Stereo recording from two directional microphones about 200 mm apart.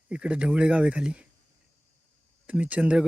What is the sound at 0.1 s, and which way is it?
Speech, 5° right (ahead or behind).